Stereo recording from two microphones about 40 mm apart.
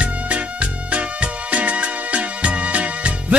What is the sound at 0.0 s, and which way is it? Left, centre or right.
Music, right.